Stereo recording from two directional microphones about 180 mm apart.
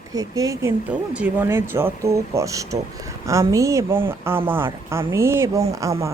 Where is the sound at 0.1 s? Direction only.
20° right (ahead or behind).